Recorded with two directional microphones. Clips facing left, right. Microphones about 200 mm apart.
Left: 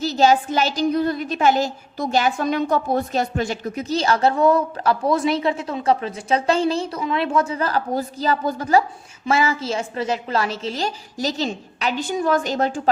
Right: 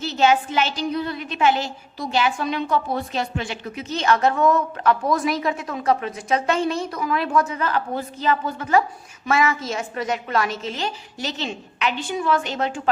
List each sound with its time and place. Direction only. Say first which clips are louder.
0.0 s a woman's voice: left 2 dB; 40° left (ahead or behind)